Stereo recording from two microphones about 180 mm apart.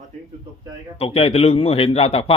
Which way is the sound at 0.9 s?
35° left (ahead or behind).